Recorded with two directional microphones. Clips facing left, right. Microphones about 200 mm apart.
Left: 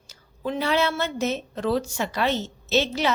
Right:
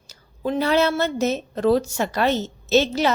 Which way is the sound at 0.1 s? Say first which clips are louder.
Right 4 dB; 40° right (ahead or behind).